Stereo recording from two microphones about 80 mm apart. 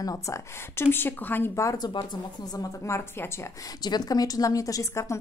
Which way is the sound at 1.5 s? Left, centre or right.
Left.